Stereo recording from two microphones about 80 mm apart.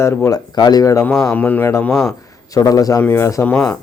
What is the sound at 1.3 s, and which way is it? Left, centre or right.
Speech, centre.